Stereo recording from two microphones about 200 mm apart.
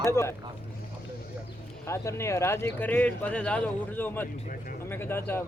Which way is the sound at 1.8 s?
15° left (ahead or behind).